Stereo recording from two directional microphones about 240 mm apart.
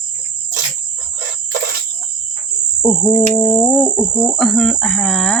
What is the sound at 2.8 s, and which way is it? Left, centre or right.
Speech, centre.